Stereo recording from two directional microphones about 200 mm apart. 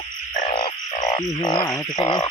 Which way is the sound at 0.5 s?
25° left (ahead or behind).